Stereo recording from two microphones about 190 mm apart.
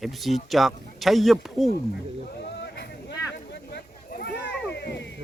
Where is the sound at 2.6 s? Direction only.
65° left (ahead or behind).